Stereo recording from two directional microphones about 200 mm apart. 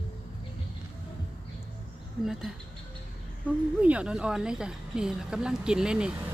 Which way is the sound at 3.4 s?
5° right (ahead or behind).